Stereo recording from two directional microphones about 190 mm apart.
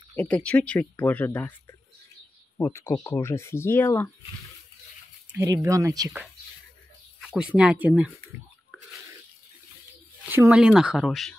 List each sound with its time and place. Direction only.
0.1 s speech: 5° left (ahead or behind)
5.4 s speech: 15° right (ahead or behind)
7.2 s speech: 5° right (ahead or behind)
10.3 s speech: 5° right (ahead or behind)